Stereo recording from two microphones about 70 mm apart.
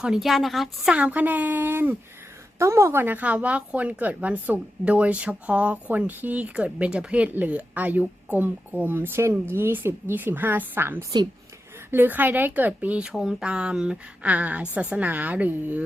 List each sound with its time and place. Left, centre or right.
0.0 s a woman's voice: centre
0.9 s speech: right
2.6 s speech: right
13.1 s speech: centre